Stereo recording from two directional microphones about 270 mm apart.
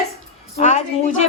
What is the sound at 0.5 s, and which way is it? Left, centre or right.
Speech, left.